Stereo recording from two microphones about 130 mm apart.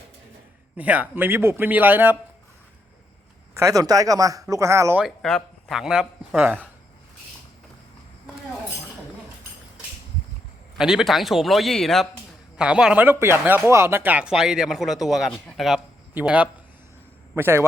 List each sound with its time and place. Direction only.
0.8 s speech: 10° right (ahead or behind)
3.5 s speech: 25° right (ahead or behind)
5.2 s a man's voice: 5° left (ahead or behind)
10.8 s speech: 5° right (ahead or behind); by 17.7 s 20° right (ahead or behind)